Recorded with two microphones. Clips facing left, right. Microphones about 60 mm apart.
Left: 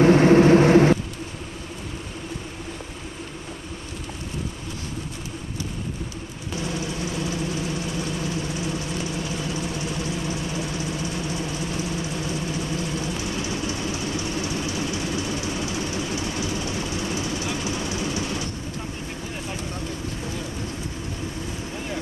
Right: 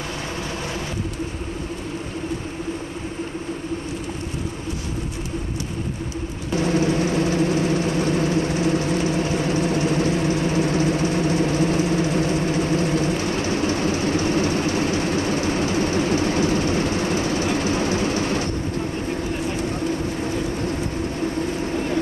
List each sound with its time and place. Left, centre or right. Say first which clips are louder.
0.0 s vehicle: left 15 dB; left
6.5 s vehicle: right 10 dB; right
21.2 s vehicle: right 10 dB; right